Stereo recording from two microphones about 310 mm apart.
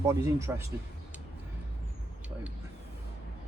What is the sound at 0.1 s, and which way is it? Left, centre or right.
Speech, centre.